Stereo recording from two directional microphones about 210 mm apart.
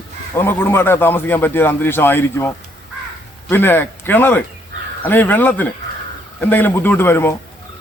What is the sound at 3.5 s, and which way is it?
A man's voice, 10° left (ahead or behind).